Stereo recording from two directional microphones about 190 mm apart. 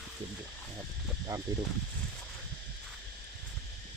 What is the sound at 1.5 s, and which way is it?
Speech, 20° right (ahead or behind).